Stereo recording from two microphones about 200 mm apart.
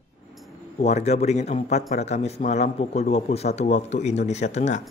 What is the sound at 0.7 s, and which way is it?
A man's voice, 35° left (ahead or behind).